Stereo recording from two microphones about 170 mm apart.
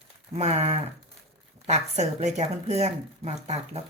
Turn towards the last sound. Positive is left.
turn(degrees=-40)  # may be behind; listen again after turning